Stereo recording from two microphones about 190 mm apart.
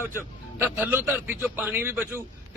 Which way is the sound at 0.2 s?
10° right (ahead or behind).